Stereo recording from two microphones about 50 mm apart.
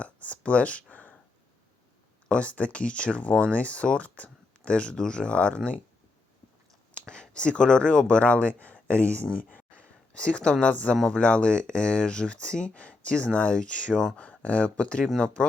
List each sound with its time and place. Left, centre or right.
0.0 s a sound: left
2.2 s speech: left
7.1 s speech: centre
10.9 s speech: centre
11.2 s speech: left
15.0 s speech: centre